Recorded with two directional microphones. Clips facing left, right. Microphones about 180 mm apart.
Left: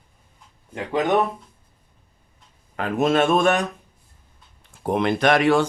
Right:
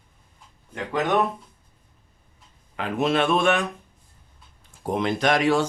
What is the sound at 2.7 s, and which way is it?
Speech, 45° left (ahead or behind).